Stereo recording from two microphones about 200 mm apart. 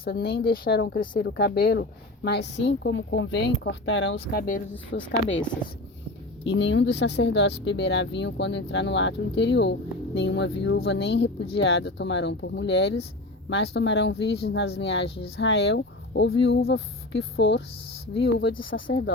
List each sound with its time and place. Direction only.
0.0 s speech: 50° left (ahead or behind)
6.4 s speech: 65° left (ahead or behind)